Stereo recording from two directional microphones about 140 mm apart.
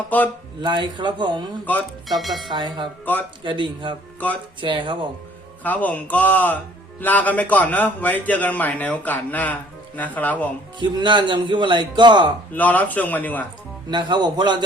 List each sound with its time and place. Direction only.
0.1 s a man's voice: 10° left (ahead or behind)
0.6 s speech: 30° right (ahead or behind)
1.7 s a man's voice: 10° left (ahead or behind)
2.0 s speech: centre (ahead or behind)
2.5 s speech: 35° right (ahead or behind)
5.6 s a man's voice: 10° left (ahead or behind)
10.8 s speech: 35° right (ahead or behind)
12.5 s a man's voice: 10° left (ahead or behind)
13.9 s speech: 30° right (ahead or behind)